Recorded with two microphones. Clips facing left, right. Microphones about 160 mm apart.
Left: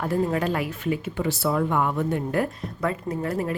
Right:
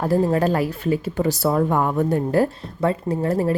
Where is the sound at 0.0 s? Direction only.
35° right (ahead or behind).